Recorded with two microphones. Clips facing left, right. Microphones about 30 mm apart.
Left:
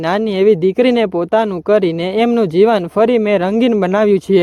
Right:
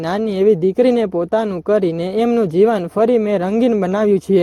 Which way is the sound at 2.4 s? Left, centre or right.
Left.